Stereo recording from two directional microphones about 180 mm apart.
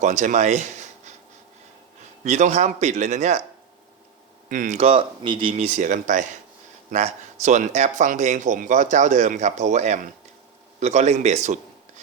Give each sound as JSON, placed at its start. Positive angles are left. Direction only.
{"t": 0.0, "sound": "speech", "side_deg": -45}
{"t": 2.2, "sound": "speech", "side_deg": -40}
{"t": 4.4, "sound": "speech", "side_deg": -45}